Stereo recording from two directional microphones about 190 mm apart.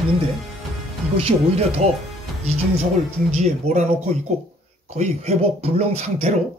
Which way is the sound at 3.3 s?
35° right (ahead or behind).